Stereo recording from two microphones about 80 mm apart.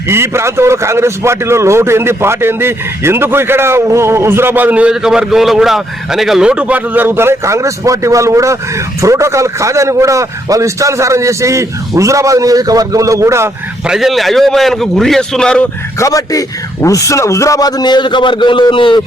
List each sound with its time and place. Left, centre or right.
0.1 s a man's voice: right
13.8 s a man's voice: centre
16.0 s a man's voice: left